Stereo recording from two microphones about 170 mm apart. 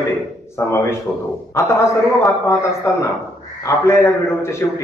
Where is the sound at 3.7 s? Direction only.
15° left (ahead or behind).